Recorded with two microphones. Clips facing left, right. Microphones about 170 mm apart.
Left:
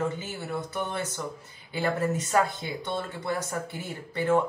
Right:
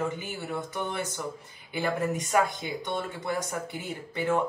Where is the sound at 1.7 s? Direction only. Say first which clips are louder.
Left 1 dB; 15° right (ahead or behind).